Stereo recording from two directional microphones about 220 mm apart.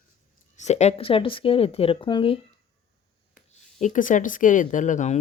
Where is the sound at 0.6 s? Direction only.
30° left (ahead or behind).